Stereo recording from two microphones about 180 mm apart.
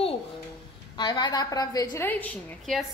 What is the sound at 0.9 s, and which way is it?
A woman's voice, 25° left (ahead or behind).